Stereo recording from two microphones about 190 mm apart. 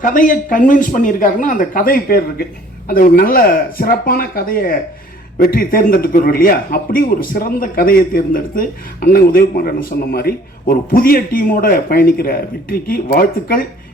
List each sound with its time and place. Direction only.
0.0 s a man's voice: 45° left (ahead or behind)